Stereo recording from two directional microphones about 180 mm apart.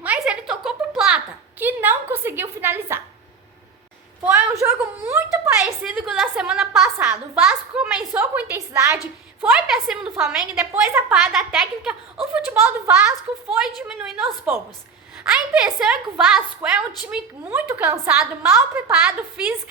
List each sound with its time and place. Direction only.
0.0 s a sound: 5° right (ahead or behind)
4.6 s a woman's voice: 10° right (ahead or behind)
9.4 s a woman's voice: centre (ahead or behind)